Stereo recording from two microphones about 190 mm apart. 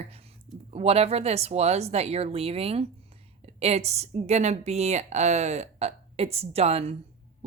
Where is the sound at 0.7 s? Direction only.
30° right (ahead or behind).